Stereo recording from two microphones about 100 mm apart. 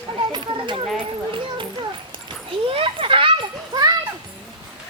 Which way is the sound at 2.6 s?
65° right (ahead or behind).